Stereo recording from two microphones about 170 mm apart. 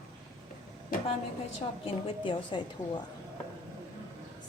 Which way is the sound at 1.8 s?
30° left (ahead or behind).